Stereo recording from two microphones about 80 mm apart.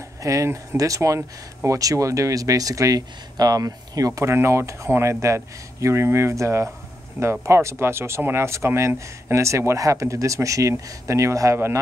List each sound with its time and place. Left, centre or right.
0.2 s speech: right
4.2 s speech: right